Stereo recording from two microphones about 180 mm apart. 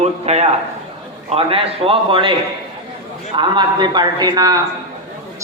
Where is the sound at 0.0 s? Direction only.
40° right (ahead or behind).